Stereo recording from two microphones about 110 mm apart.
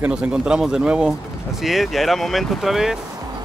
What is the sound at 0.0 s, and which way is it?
A man's voice, 10° right (ahead or behind).